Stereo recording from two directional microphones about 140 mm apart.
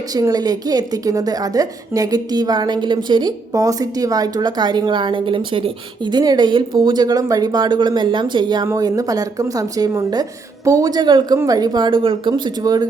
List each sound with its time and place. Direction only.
0.1 s a woman's voice: 25° right (ahead or behind)